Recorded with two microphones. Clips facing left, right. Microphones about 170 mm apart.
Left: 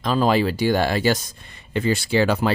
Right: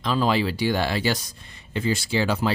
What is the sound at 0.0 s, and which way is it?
Speech, 45° left (ahead or behind).